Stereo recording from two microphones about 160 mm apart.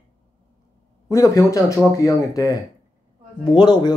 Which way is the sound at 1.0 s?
20° left (ahead or behind).